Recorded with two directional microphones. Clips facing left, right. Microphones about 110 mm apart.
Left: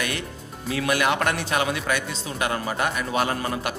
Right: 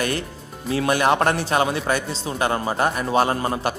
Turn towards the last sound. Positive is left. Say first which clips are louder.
# right 4 dB
turn(degrees=-30)  # may be behind; listen again after turning